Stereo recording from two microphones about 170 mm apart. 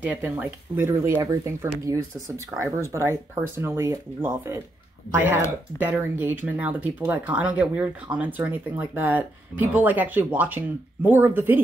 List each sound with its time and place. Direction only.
0.0 s speech: 10° right (ahead or behind)
5.8 s speech: 10° right (ahead or behind)